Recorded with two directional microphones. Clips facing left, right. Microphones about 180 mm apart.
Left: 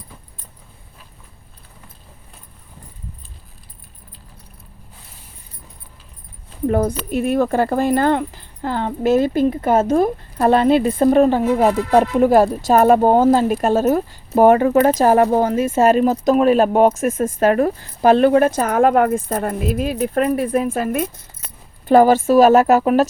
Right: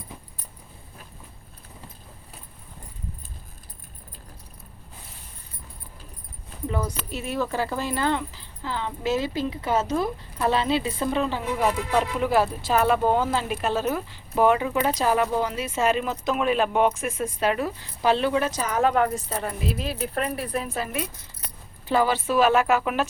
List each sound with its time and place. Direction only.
6.7 s speech: 55° left (ahead or behind)